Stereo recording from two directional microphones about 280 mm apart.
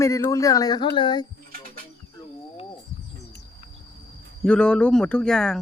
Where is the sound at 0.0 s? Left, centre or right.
Centre.